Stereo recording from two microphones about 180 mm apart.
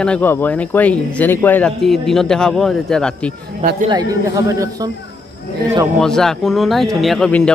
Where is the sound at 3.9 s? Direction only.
20° right (ahead or behind).